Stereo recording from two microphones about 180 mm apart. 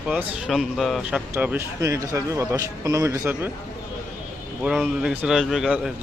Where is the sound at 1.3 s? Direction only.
10° right (ahead or behind).